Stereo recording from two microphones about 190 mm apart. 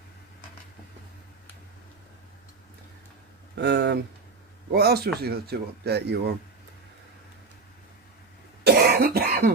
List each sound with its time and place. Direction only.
3.6 s speech: 65° right (ahead or behind)
8.6 s cough: 55° right (ahead or behind)